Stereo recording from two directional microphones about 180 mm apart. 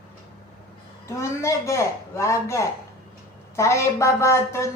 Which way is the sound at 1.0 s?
15° left (ahead or behind).